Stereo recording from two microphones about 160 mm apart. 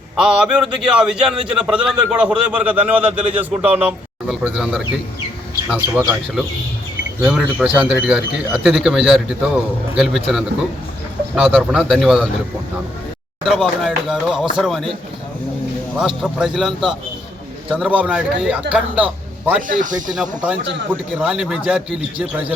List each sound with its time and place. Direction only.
0.2 s a man's voice: 5° right (ahead or behind)
13.4 s speech: centre (ahead or behind)
16.0 s a man's voice: 5° right (ahead or behind)
19.6 s speech: 55° right (ahead or behind)
20.1 s speech: 5° right (ahead or behind)